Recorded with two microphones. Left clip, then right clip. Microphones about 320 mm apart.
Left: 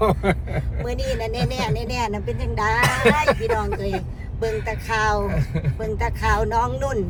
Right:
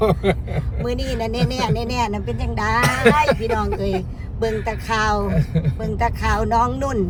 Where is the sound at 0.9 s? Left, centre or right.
Centre.